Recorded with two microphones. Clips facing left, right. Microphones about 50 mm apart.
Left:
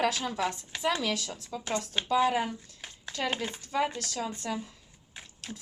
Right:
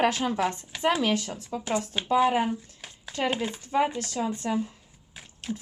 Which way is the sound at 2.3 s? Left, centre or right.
Right.